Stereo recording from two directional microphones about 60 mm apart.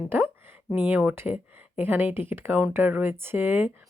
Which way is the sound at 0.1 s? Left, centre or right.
Right.